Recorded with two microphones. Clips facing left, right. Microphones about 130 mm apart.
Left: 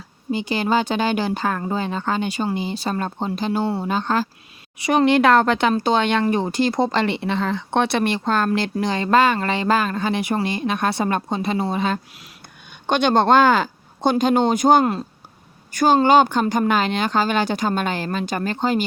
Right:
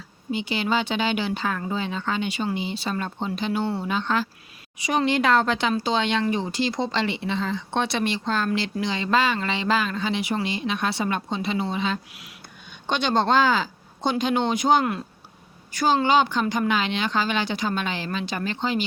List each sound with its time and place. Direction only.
0.3 s speech: 40° left (ahead or behind)
4.8 s speech: 60° left (ahead or behind); by 12.3 s 45° left (ahead or behind)
12.9 s speech: 55° left (ahead or behind)